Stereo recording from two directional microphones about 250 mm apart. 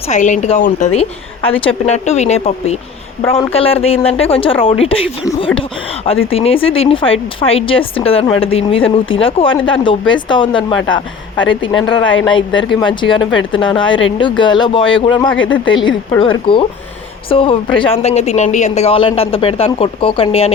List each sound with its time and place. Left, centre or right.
0.1 s speech: left
6.3 s speech: left